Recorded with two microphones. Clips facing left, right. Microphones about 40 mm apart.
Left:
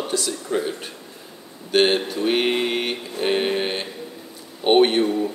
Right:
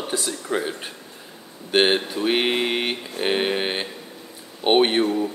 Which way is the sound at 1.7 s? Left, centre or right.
Centre.